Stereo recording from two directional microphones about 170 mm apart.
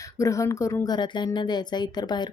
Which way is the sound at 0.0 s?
20° left (ahead or behind).